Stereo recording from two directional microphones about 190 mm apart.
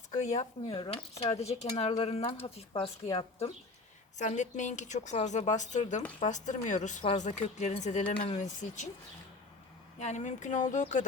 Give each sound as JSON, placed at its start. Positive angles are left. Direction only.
{"t": 0.1, "sound": "a woman's voice", "side_deg": 35}
{"t": 4.2, "sound": "a woman's voice", "side_deg": 40}
{"t": 10.0, "sound": "a woman's voice", "side_deg": 40}